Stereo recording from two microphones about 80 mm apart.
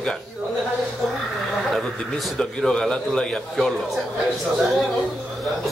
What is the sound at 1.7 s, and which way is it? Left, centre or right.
A man's voice, centre.